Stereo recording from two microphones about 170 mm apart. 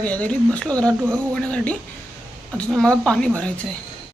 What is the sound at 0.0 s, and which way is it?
A woman's voice, 10° left (ahead or behind).